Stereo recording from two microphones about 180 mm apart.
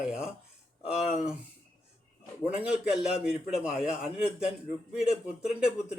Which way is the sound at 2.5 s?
5° right (ahead or behind).